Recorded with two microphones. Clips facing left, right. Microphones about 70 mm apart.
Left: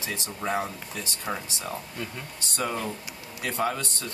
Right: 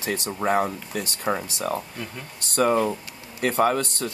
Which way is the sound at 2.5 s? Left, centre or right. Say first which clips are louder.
Right 10 dB; right.